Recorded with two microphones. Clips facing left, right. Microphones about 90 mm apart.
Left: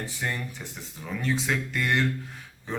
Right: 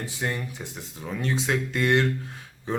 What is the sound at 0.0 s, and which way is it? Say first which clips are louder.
Speech: right 2 dB; 20° right (ahead or behind).